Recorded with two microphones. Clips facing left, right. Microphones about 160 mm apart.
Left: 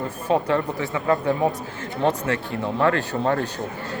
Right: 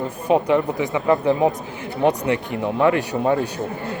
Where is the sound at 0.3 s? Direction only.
15° right (ahead or behind).